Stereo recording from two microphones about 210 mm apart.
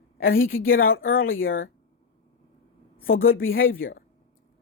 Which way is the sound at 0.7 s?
45° left (ahead or behind).